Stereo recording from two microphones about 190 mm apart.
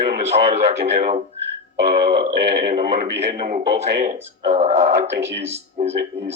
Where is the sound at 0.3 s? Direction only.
40° right (ahead or behind).